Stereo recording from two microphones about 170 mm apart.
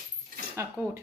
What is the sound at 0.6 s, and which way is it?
Speech, 15° right (ahead or behind).